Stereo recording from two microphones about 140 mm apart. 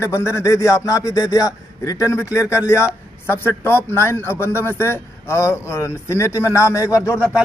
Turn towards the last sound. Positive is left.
turn(degrees=20)  # may be behind; listen again after turning